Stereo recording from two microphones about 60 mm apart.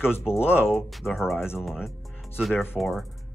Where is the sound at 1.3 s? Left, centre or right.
Left.